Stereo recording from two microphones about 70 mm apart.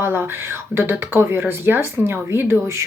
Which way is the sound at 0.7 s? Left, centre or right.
Right.